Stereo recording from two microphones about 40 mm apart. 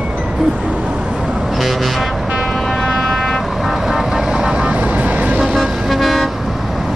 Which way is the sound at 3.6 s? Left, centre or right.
Centre.